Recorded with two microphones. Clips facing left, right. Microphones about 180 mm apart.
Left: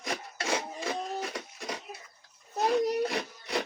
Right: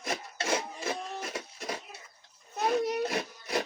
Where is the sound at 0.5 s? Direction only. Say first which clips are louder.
Even; 5° right (ahead or behind).